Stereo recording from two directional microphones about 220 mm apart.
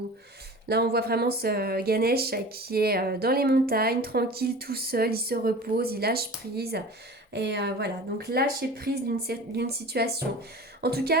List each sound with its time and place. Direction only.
0.7 s a woman's voice: 45° right (ahead or behind)